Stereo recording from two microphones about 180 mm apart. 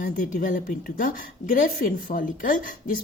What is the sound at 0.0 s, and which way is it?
A woman's voice, 50° left (ahead or behind).